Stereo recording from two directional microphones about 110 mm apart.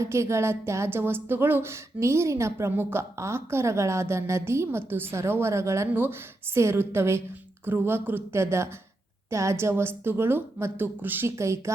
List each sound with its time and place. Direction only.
0.0 s speech: 25° right (ahead or behind)